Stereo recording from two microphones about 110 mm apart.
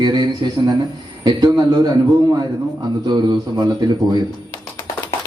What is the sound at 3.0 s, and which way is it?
Speech, 40° right (ahead or behind).